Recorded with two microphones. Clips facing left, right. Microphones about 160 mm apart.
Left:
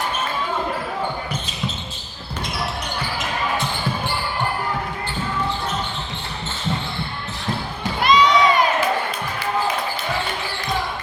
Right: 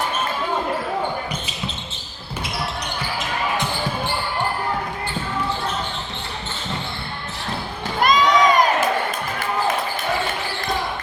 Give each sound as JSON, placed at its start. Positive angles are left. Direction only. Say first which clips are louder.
{"t": 8.0, "sound": "crowd", "louder": "even", "side_deg": -45}